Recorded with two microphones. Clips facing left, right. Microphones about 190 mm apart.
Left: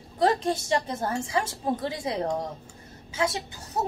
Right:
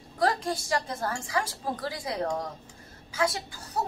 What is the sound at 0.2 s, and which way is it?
A woman's voice, 25° left (ahead or behind).